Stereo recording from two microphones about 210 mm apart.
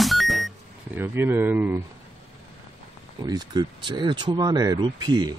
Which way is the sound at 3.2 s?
20° right (ahead or behind).